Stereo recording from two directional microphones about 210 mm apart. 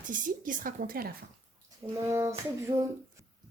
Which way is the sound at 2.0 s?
15° right (ahead or behind).